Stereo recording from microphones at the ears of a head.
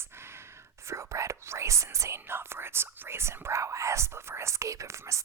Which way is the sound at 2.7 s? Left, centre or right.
Right.